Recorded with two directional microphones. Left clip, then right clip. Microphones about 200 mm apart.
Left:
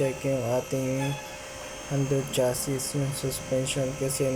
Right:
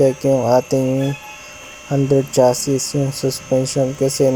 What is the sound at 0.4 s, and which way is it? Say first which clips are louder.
Hum: right 13 dB; 25° right (ahead or behind).